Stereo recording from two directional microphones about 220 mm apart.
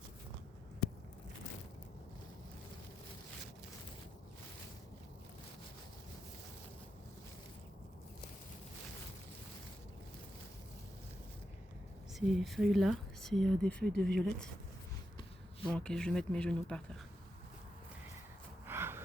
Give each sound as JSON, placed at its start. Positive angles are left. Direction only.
{"t": 12.2, "sound": "speech", "side_deg": 0}
{"t": 13.9, "sound": "speech", "side_deg": -50}
{"t": 14.3, "sound": "speech", "side_deg": 5}
{"t": 15.6, "sound": "speech", "side_deg": 5}
{"t": 18.6, "sound": "a sound", "side_deg": -10}